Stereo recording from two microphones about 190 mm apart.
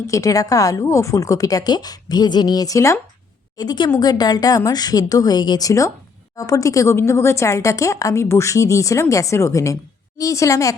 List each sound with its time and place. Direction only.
0.1 s a woman's voice: 15° left (ahead or behind)